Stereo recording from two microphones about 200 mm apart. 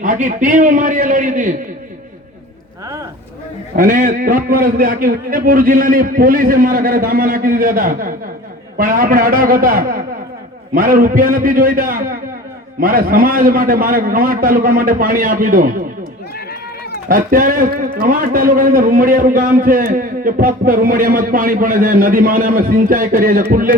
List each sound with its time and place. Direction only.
0.0 s a man's voice: 40° right (ahead or behind)
3.8 s a man's voice: 45° right (ahead or behind)
17.1 s a man's voice: 45° right (ahead or behind)